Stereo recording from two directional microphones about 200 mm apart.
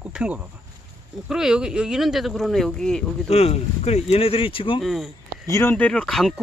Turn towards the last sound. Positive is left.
turn(degrees=0)  # may be behind; listen again after turning